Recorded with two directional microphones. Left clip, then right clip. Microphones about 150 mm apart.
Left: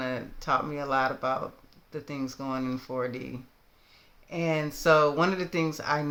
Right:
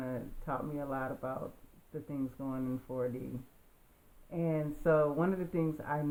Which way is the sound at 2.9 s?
45° left (ahead or behind).